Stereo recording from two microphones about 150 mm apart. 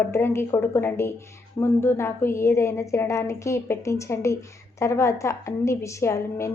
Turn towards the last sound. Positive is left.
turn(degrees=20)  # may be behind; listen again after turning